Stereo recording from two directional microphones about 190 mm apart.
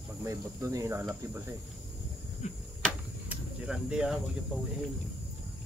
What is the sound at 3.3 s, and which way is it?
Speech, 5° right (ahead or behind).